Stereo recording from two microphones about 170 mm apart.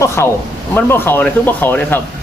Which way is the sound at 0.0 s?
15° left (ahead or behind).